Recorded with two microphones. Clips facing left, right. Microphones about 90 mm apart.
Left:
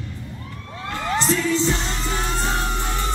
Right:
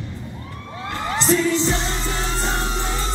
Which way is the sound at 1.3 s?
20° right (ahead or behind).